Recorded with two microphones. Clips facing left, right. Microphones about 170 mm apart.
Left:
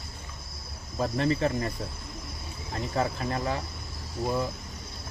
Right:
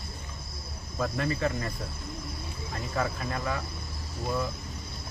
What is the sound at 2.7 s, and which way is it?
Speech, 30° left (ahead or behind).